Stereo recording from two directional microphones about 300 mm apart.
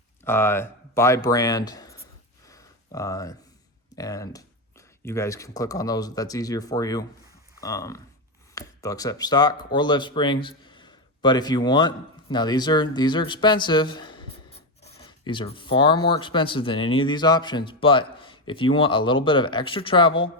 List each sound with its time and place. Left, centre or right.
0.3 s speech: centre
2.5 s a sound: centre
3.9 s a man's voice: centre